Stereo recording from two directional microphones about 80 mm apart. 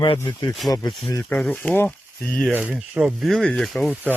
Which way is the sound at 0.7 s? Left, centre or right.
Left.